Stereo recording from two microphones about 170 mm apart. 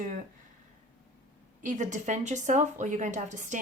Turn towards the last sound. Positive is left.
turn(degrees=-45)  # may be behind; listen again after turning